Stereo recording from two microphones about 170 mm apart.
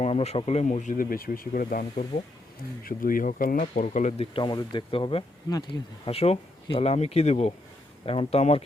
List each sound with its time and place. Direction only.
0.0 s speech: 40° left (ahead or behind)
4.4 s speech: 25° left (ahead or behind)
6.1 s speech: 35° left (ahead or behind)